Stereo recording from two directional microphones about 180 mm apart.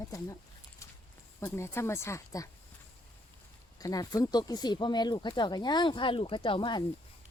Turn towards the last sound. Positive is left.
turn(degrees=25)  # may be behind; listen again after turning